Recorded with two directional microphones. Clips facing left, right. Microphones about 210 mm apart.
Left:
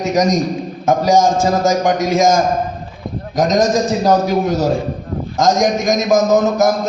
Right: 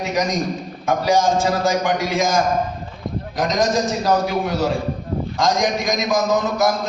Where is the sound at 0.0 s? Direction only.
45° left (ahead or behind).